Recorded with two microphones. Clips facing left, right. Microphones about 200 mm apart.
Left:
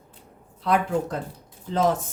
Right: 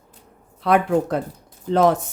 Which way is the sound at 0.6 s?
65° right (ahead or behind).